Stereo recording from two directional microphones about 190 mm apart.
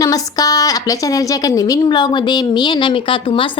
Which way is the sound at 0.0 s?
20° left (ahead or behind).